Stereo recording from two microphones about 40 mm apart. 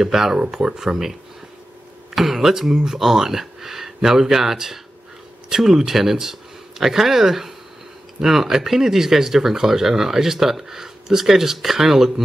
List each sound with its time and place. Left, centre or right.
0.0 s speech: centre
0.4 s speech: right
2.1 s speech: centre